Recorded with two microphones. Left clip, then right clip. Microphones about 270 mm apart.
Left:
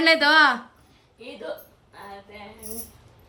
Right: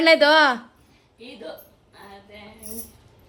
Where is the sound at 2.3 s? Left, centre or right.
Centre.